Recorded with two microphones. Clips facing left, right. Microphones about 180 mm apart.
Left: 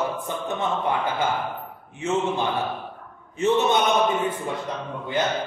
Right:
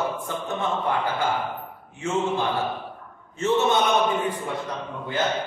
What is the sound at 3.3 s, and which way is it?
Speech, 15° left (ahead or behind).